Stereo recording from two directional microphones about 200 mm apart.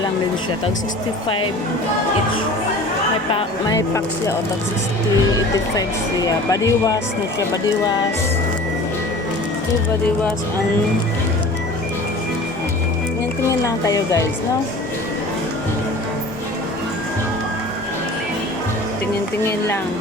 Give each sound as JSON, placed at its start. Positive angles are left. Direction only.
{"t": 3.3, "sound": "speech", "side_deg": 15}
{"t": 6.7, "sound": "speech", "side_deg": 15}
{"t": 13.7, "sound": "speech", "side_deg": 15}
{"t": 19.5, "sound": "speech", "side_deg": 10}